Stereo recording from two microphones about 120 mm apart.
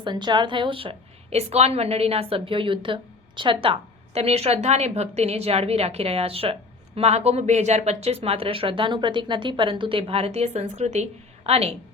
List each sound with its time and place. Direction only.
0.0 s a woman's voice: 40° right (ahead or behind); by 11.7 s 60° right (ahead or behind)